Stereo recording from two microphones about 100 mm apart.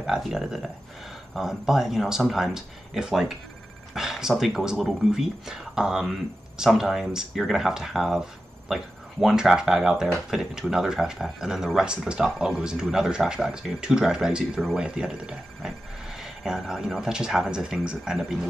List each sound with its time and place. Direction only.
0.0 s speech: 5° right (ahead or behind)